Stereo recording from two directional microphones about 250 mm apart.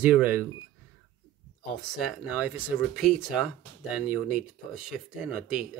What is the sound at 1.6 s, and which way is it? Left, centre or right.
Speech, centre.